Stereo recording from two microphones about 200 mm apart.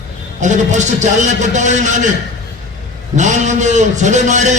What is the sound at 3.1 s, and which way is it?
A man's voice, 35° right (ahead or behind).